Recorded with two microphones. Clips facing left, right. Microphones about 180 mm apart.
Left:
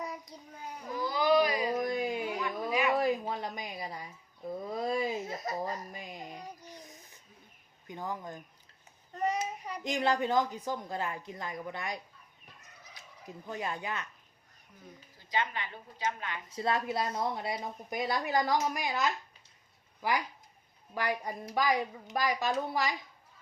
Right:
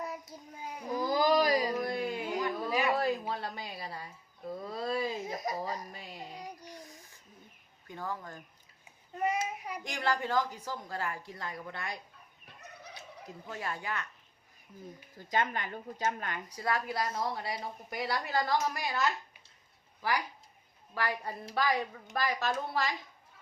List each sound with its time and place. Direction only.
0.0 s child singing: 5° right (ahead or behind)
0.9 s a sound: 40° right (ahead or behind)
1.8 s a sound: 15° left (ahead or behind)
5.2 s speech: 15° right (ahead or behind)
5.9 s a sound: 15° left (ahead or behind)
7.9 s a woman's voice: 20° left (ahead or behind)
9.1 s child singing: 10° right (ahead or behind)
9.8 s a woman's voice: 20° left (ahead or behind)
13.5 s a woman's voice: 20° left (ahead or behind)
15.2 s speech: 45° right (ahead or behind)
16.5 s a woman's voice: 25° left (ahead or behind)